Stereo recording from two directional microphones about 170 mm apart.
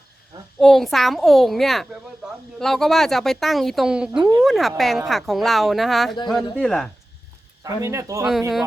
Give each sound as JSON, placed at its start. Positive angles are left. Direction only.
{"t": 0.6, "sound": "a child's voice", "side_deg": 0}
{"t": 7.6, "sound": "speech", "side_deg": -15}
{"t": 8.3, "sound": "a child's voice", "side_deg": 0}